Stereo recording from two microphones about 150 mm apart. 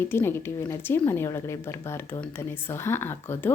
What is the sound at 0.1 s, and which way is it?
Speech, 15° left (ahead or behind).